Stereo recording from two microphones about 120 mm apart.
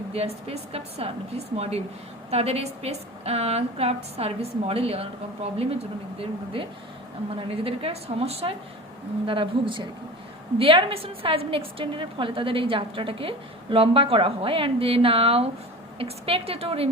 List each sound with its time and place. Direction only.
0.1 s a woman's voice: 55° right (ahead or behind)
9.2 s a woman's voice: 45° right (ahead or behind)